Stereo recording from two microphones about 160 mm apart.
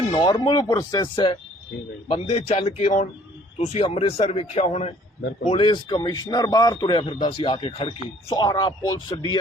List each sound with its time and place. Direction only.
0.1 s a man's voice: 30° left (ahead or behind)
2.1 s a man's voice: 40° left (ahead or behind); by 9.4 s 25° left (ahead or behind)